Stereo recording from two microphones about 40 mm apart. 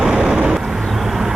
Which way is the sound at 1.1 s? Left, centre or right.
Centre.